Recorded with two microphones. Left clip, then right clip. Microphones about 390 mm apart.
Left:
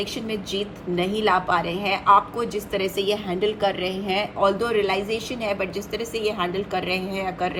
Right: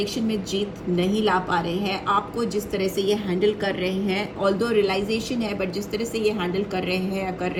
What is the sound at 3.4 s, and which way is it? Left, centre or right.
Speech, left.